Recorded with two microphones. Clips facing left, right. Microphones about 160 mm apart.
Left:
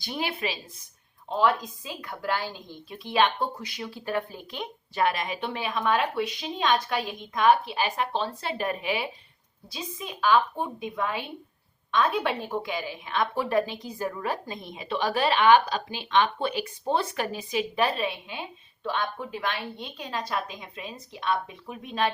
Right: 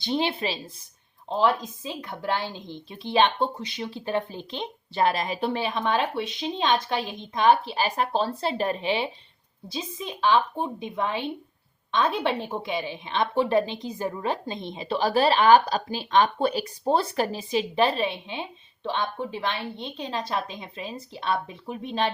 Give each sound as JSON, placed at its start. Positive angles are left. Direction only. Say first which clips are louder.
{"t": 0.0, "sound": "a woman's voice", "louder": "right 5 dB", "side_deg": -25}